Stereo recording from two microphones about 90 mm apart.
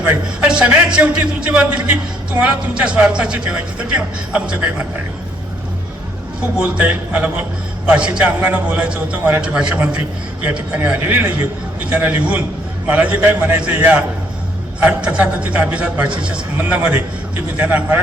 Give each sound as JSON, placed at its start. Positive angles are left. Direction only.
{"t": 0.6, "sound": "a man's voice", "side_deg": -15}
{"t": 6.6, "sound": "a man's voice", "side_deg": -15}